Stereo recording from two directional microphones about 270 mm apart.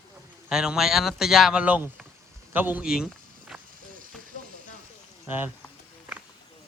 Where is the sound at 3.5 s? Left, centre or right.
Centre.